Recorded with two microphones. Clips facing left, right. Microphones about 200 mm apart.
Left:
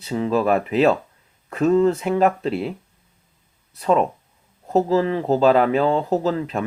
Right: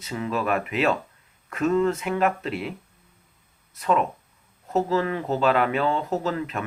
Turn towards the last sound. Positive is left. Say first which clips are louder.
# left 5 dB
turn(degrees=35)  # may be behind; listen again after turning